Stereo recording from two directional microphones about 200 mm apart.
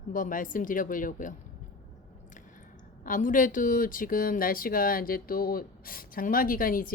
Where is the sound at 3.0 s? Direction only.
40° left (ahead or behind).